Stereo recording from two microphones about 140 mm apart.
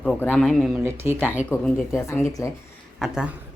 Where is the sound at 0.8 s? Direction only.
20° right (ahead or behind).